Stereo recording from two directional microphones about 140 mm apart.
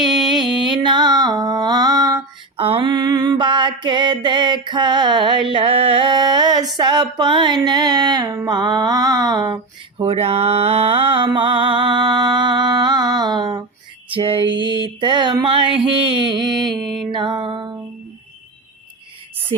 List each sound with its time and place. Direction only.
0.0 s mantra: 30° right (ahead or behind)
2.6 s mantra: 40° right (ahead or behind)
8.4 s music: 30° right (ahead or behind)
10.1 s mantra: 45° right (ahead or behind)
16.7 s mantra: centre (ahead or behind)
17.1 s music: 35° right (ahead or behind)